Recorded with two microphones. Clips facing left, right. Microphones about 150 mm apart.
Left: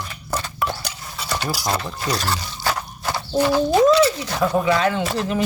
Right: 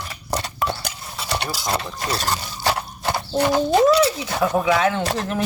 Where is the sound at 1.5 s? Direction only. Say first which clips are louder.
Left 3 dB; 20° right (ahead or behind).